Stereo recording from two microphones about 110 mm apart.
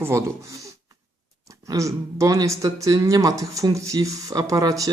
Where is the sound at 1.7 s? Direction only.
30° right (ahead or behind).